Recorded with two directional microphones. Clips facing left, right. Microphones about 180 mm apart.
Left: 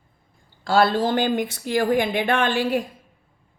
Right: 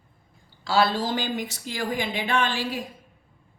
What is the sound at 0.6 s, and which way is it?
Speech, 55° left (ahead or behind).